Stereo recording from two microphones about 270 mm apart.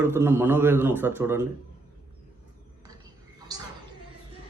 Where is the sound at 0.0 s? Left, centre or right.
Centre.